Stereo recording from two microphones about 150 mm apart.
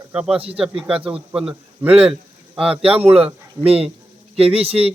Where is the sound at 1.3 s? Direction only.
5° right (ahead or behind).